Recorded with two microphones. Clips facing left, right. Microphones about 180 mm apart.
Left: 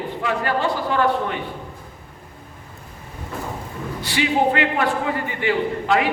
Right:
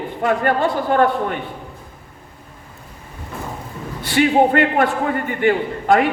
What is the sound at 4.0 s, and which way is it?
A man's voice, 50° right (ahead or behind).